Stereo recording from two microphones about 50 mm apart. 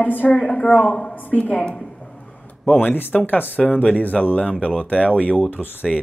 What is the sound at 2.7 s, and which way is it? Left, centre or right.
Speech, left.